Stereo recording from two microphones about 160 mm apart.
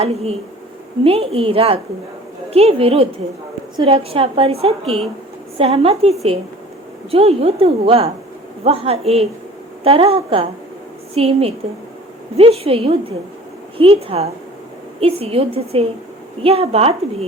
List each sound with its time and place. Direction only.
0.0 s a woman's voice: 40° right (ahead or behind)